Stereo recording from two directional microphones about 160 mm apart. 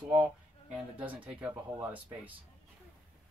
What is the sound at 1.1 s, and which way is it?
Speech, 10° right (ahead or behind).